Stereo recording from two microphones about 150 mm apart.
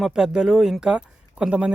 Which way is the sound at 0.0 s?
5° right (ahead or behind).